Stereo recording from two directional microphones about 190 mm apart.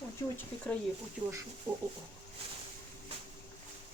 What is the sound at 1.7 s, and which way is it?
Speech, 25° right (ahead or behind).